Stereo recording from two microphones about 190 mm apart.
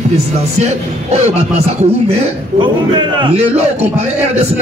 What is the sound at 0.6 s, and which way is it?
Speech, 35° right (ahead or behind).